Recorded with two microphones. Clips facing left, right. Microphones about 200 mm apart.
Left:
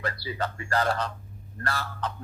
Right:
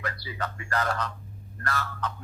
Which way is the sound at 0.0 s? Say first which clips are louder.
Left 3 dB; 30° left (ahead or behind).